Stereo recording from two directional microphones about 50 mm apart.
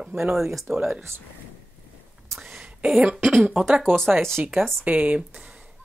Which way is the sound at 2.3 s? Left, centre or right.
Centre.